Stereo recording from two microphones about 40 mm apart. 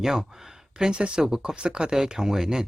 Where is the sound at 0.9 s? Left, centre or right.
Right.